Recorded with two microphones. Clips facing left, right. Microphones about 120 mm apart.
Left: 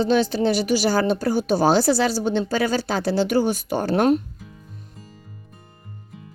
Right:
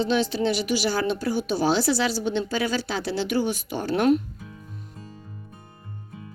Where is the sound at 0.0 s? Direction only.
40° left (ahead or behind).